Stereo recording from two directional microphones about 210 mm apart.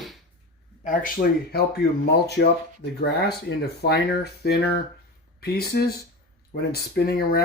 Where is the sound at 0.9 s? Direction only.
45° left (ahead or behind).